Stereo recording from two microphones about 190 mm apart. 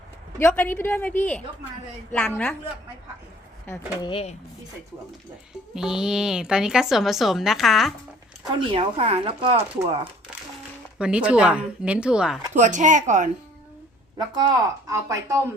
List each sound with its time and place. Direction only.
0.3 s a woman's voice: 10° left (ahead or behind)
4.0 s speech: 30° left (ahead or behind)
5.7 s a woman's voice: 5° right (ahead or behind)
8.5 s speech: 30° right (ahead or behind)
10.9 s a woman's voice: 5° right (ahead or behind)
12.5 s speech: 40° right (ahead or behind)
14.2 s speech: 20° right (ahead or behind)